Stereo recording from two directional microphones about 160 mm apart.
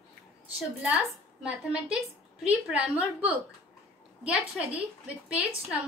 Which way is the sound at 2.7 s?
5° right (ahead or behind).